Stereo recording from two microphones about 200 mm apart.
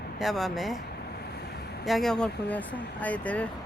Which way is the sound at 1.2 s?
55° left (ahead or behind).